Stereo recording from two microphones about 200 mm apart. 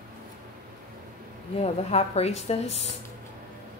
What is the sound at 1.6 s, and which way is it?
A woman's voice, 30° left (ahead or behind).